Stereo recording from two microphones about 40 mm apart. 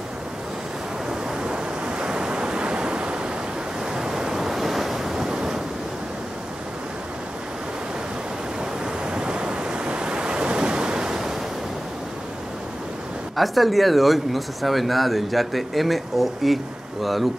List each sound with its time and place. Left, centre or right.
1.4 s waves: right
9.0 s waves: right
13.4 s speech: centre